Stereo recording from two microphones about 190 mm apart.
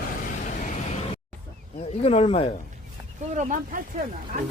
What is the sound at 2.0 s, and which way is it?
Speech, 30° left (ahead or behind).